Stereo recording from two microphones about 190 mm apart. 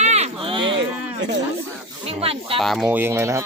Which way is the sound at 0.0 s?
35° right (ahead or behind).